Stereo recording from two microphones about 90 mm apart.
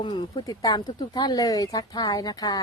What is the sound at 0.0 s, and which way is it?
A woman's voice, 60° left (ahead or behind).